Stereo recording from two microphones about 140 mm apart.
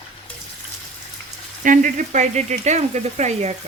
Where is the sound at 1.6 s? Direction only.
65° right (ahead or behind).